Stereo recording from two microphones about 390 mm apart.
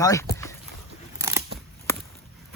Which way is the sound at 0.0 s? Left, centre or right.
Centre.